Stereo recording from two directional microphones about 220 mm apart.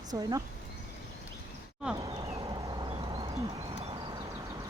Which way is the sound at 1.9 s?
20° right (ahead or behind).